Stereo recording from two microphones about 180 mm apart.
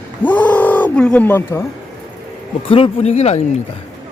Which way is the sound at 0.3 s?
10° left (ahead or behind).